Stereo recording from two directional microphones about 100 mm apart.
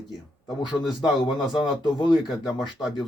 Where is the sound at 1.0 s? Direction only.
45° left (ahead or behind).